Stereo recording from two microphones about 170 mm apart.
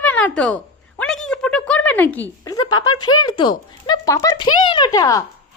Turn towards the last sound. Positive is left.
turn(degrees=20)  # may be behind; listen again after turning